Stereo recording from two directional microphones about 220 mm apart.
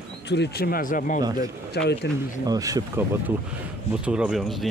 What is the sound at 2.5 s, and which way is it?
Speech, 15° right (ahead or behind).